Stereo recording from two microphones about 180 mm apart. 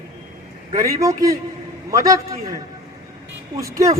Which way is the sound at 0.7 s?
20° right (ahead or behind).